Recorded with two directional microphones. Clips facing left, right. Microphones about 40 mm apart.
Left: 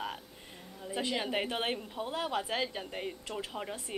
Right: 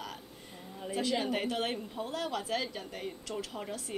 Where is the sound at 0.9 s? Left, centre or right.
Left.